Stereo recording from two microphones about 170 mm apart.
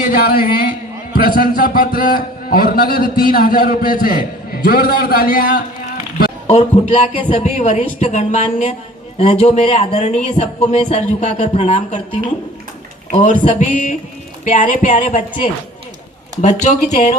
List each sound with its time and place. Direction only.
0.0 s a man's voice: 60° left (ahead or behind)
6.5 s speech: 40° left (ahead or behind)
13.1 s speech: 45° left (ahead or behind)